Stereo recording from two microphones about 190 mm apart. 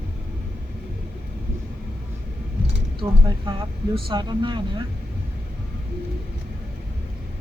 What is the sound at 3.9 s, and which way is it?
Speech, 25° right (ahead or behind).